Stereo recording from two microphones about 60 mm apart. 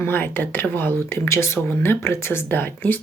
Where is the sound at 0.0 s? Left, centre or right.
Left.